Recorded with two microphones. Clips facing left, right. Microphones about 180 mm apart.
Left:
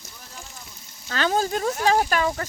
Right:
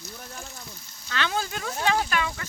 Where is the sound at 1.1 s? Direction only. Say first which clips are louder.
Left 6 dB; 40° left (ahead or behind).